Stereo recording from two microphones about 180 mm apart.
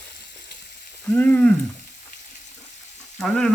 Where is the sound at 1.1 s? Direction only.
10° left (ahead or behind).